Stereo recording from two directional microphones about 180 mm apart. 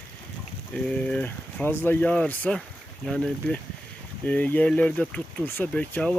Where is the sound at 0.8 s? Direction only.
5° left (ahead or behind).